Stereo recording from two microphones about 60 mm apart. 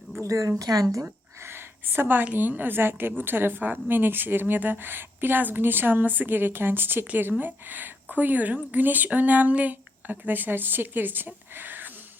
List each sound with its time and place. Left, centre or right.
0.2 s a woman's voice: right
0.6 s speech: right
1.4 s a sound: right
2.2 s a woman's voice: right